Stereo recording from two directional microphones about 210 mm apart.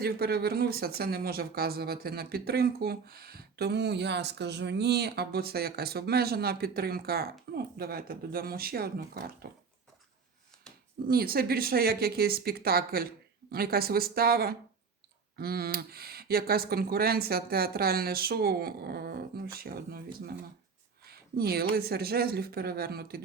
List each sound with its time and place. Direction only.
0.0 s speech: 50° right (ahead or behind)
11.1 s speech: 45° right (ahead or behind)